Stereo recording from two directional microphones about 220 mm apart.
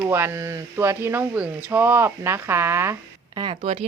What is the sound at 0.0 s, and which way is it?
Speech, 10° right (ahead or behind).